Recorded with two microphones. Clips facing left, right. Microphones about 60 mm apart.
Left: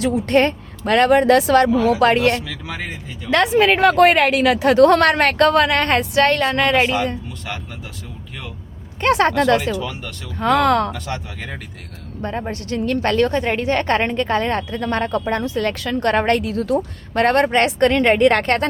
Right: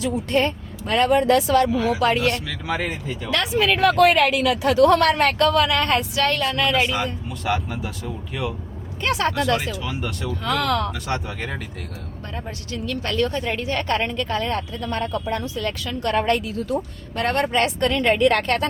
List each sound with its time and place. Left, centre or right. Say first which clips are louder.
0.0 s speech: left 5 dB; left
2.5 s speech: right 3 dB; centre
3.2 s speech: left 6 dB; left
4.4 s speech: left 4 dB; left
7.3 s speech: right 6 dB; centre
9.0 s speech: left 6 dB; left
9.7 s speech: left 2 dB; centre
10.4 s speech: left 7 dB; left
10.9 s speech: right 1 dB; centre
12.2 s speech: left 10 dB; left